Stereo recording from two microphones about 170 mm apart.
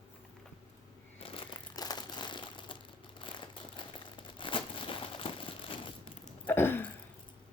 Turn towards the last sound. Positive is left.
turn(degrees=10)  # may be behind; listen again after turning